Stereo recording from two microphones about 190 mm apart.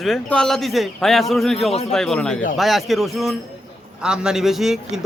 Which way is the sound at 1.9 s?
5° left (ahead or behind).